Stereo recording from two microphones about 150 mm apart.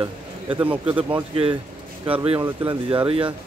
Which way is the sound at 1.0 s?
35° right (ahead or behind).